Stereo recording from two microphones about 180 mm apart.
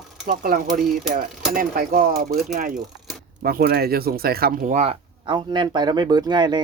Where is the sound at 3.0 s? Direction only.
Centre (ahead or behind).